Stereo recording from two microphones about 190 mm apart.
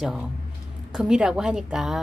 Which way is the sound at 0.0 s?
Centre (ahead or behind).